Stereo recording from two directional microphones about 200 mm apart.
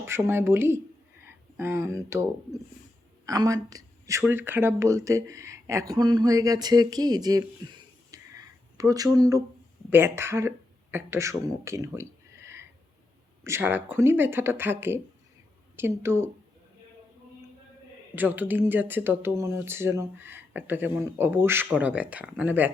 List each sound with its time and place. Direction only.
0.0 s speech: 10° right (ahead or behind)
3.2 s speech: 20° right (ahead or behind)
8.1 s a sound: 15° right (ahead or behind)
9.9 s speech: 10° right (ahead or behind)
13.4 s speech: 10° right (ahead or behind)
18.1 s speech: 10° right (ahead or behind)